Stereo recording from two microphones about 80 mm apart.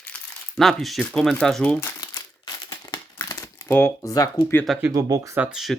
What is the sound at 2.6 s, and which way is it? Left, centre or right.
Crumpling, left.